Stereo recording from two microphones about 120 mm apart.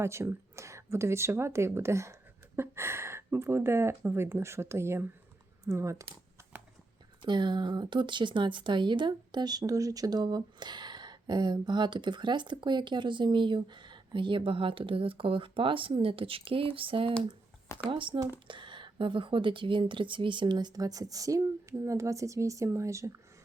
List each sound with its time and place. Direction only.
0.0 s speech: 20° right (ahead or behind)
7.2 s speech: 40° right (ahead or behind)